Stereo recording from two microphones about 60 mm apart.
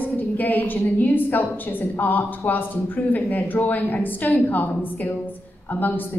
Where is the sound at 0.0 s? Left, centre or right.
Left.